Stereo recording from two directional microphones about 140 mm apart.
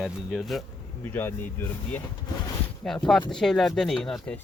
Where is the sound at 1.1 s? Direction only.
15° left (ahead or behind).